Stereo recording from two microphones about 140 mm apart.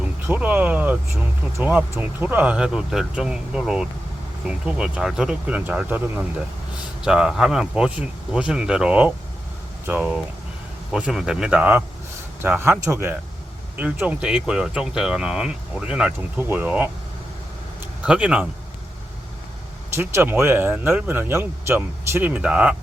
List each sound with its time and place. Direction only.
0.0 s speech: 10° right (ahead or behind)
7.0 s speech: 5° right (ahead or behind)
18.0 s speech: 10° right (ahead or behind)
20.0 s speech: 20° right (ahead or behind)